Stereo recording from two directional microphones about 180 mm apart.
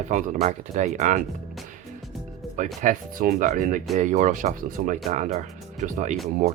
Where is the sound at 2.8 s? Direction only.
50° right (ahead or behind).